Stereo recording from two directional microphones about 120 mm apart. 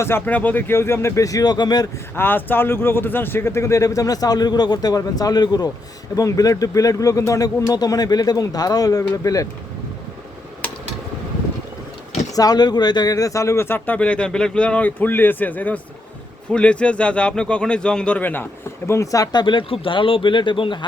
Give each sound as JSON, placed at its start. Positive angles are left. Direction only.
{"t": 0.0, "sound": "a man's voice", "side_deg": 15}
{"t": 2.1, "sound": "a man's voice", "side_deg": 15}
{"t": 12.3, "sound": "speech", "side_deg": 30}
{"t": 18.9, "sound": "speech", "side_deg": 25}